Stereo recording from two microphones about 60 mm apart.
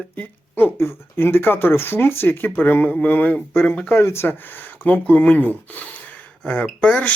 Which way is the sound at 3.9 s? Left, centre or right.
Left.